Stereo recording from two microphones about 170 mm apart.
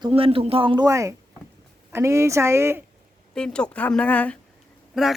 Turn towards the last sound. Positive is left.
turn(degrees=0)  # may be behind; listen again after turning